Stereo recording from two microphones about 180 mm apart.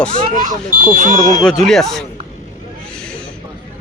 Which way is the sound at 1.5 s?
5° left (ahead or behind).